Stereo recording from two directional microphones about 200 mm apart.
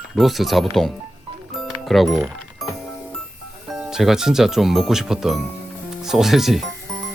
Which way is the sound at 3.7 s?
Centre (ahead or behind).